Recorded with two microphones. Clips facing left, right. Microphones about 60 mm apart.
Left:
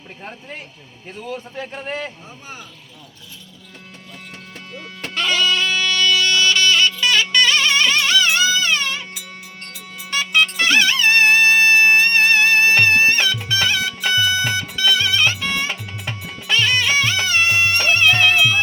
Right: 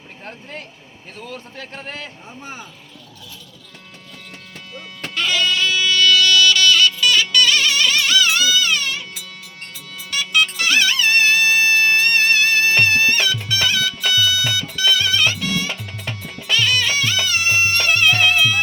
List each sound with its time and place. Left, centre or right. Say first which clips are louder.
1.2 s a man's voice: left 5 dB; centre
5.1 s music: left 1 dB; left
10.1 s music: left 1 dB; left; by 16.4 s centre
16.5 s music: left 1 dB; left